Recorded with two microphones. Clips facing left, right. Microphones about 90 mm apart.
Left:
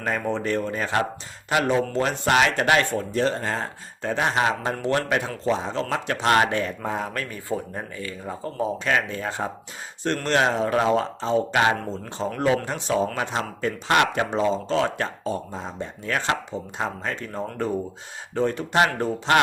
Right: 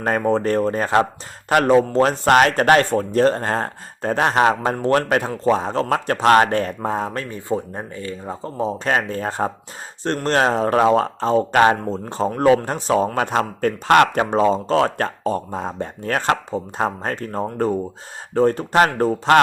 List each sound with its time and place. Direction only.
0.0 s a man's voice: 45° right (ahead or behind); by 8.7 s 25° right (ahead or behind)
8.8 s a man's voice: 40° right (ahead or behind)